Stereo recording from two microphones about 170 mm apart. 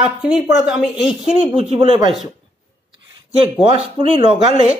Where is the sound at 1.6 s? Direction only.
30° right (ahead or behind).